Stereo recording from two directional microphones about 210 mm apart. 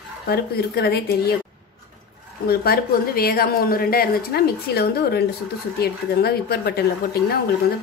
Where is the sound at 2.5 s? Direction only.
45° left (ahead or behind).